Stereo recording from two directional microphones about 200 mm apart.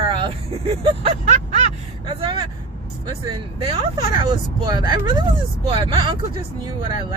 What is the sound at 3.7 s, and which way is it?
Speech, 25° right (ahead or behind).